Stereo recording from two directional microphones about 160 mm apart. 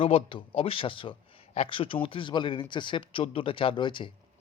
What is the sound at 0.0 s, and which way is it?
Speech, 35° left (ahead or behind).